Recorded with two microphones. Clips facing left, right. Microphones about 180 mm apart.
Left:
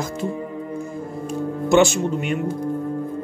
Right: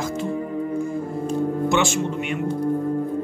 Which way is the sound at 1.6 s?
40° left (ahead or behind).